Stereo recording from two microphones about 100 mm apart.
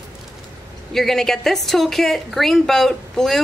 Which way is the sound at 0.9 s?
5° left (ahead or behind).